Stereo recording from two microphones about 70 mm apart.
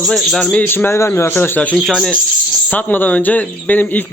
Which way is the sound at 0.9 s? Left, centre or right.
Left.